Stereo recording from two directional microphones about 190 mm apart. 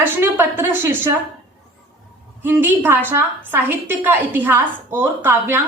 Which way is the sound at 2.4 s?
10° right (ahead or behind).